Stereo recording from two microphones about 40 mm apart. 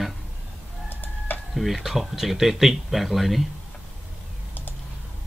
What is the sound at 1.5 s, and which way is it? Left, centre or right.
Speech, centre.